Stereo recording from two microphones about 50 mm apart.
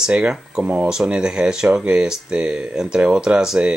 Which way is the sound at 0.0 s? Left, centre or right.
Centre.